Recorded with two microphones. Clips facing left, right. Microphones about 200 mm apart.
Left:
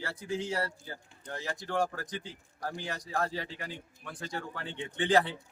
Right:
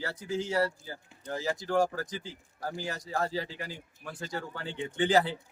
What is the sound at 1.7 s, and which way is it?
Speech, centre (ahead or behind).